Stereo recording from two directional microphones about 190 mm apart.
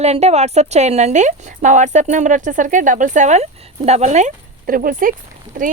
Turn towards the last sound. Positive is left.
turn(degrees=-45)  # may be behind; listen again after turning